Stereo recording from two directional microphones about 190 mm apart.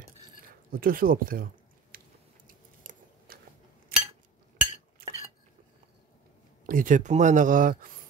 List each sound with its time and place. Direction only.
0.7 s speech: 50° right (ahead or behind)
2.4 s biting: 45° right (ahead or behind)
3.9 s cutlery: 50° right (ahead or behind)
6.6 s speech: 45° right (ahead or behind)